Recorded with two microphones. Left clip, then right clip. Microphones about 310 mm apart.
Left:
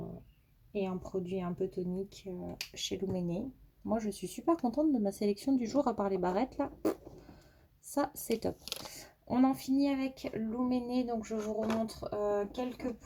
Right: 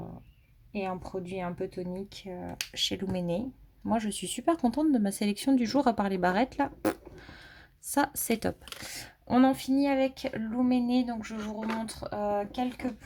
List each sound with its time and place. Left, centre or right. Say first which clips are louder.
0.7 s speech: right 2 dB; right
7.9 s speech: right 5 dB; right